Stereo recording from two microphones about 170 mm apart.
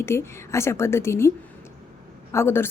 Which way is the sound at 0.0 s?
15° left (ahead or behind).